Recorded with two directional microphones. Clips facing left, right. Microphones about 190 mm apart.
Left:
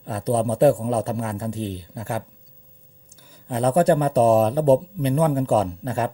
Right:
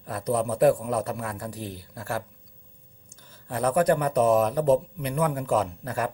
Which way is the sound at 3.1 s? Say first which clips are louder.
Left 2 dB; 10° left (ahead or behind).